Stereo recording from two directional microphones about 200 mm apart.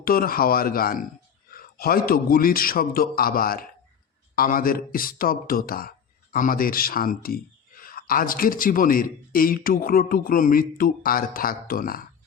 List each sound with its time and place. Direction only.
0.0 s speech: 45° left (ahead or behind)